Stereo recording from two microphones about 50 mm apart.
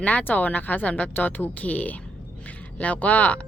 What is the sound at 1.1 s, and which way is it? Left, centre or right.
Speech, left.